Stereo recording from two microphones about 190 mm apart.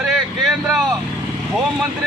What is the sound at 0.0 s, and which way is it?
Vehicle, centre (ahead or behind).